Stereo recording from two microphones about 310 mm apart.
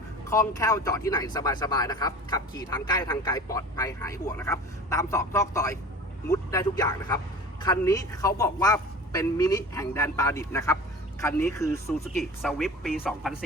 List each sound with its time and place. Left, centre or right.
0.3 s a man's voice: centre